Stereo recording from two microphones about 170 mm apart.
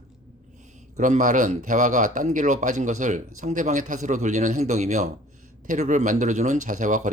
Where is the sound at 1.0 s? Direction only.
45° right (ahead or behind).